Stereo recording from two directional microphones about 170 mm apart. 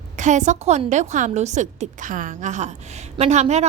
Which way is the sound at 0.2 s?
45° right (ahead or behind).